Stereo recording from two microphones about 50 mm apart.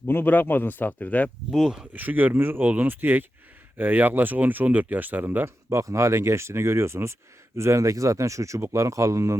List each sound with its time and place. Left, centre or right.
0.0 s a man's voice: left
1.5 s speech: centre
1.9 s speech: right
5.6 s speech: right